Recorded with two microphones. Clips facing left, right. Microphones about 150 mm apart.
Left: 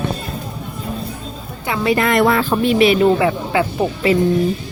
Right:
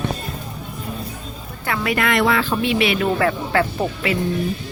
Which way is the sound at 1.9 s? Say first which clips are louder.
Left 5 dB; 30° left (ahead or behind).